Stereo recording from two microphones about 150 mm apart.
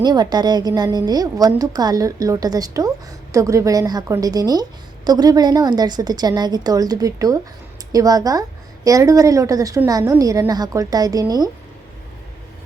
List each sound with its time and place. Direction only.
0.0 s a woman's voice: 30° right (ahead or behind)